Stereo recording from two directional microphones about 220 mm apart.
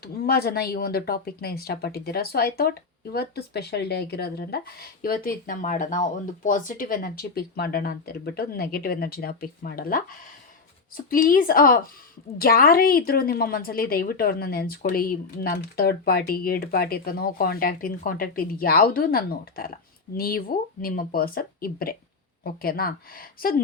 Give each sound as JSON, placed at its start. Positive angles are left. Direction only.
{"t": 0.0, "sound": "a woman's voice", "side_deg": 45}